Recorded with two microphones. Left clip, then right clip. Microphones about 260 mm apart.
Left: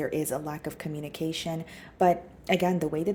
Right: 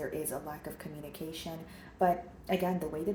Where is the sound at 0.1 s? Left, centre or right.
Left.